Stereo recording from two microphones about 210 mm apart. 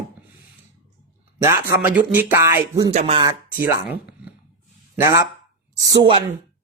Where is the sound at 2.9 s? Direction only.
25° right (ahead or behind).